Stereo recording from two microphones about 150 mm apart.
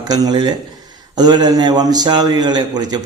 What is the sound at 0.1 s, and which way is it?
A man's voice, 30° right (ahead or behind).